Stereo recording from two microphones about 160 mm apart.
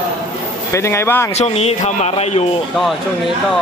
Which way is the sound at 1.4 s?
40° left (ahead or behind).